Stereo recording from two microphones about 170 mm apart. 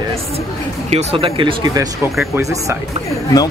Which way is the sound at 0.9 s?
35° right (ahead or behind).